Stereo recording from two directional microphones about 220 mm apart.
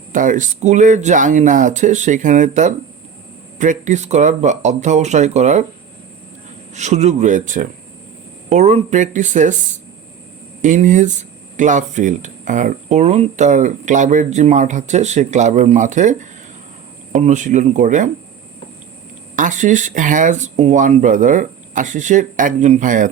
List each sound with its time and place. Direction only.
0.1 s speech: 35° right (ahead or behind)
6.7 s speech: 30° right (ahead or behind)
10.6 s speech: 35° right (ahead or behind)
19.4 s speech: 35° right (ahead or behind)